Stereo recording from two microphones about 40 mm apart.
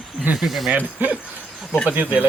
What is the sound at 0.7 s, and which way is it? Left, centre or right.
Speech, right.